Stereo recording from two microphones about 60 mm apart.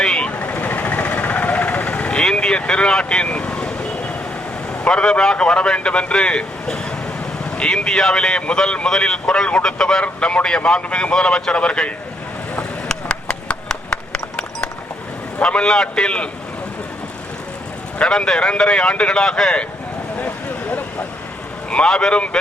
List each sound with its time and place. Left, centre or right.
0.0 s vehicle: centre
4.9 s speech: centre
12.5 s a sound: centre
15.4 s speech: centre
18.0 s speech: centre
20.1 s a sound: left
21.7 s speech: centre